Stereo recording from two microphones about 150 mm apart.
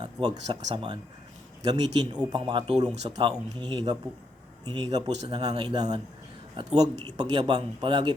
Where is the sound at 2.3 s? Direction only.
35° right (ahead or behind).